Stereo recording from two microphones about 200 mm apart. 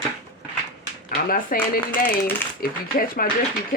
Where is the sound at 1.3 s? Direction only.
45° left (ahead or behind).